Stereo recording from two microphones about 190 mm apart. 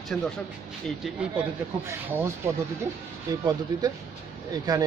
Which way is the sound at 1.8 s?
15° right (ahead or behind).